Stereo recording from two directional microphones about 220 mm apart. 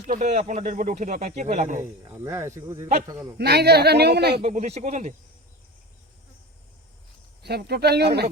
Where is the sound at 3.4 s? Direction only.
45° right (ahead or behind).